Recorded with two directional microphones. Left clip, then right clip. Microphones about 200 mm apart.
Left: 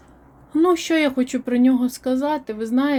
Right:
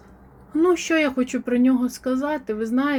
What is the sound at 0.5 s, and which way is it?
Speech, 25° left (ahead or behind).